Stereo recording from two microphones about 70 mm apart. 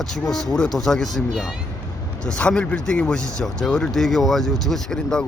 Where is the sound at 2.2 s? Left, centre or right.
Centre.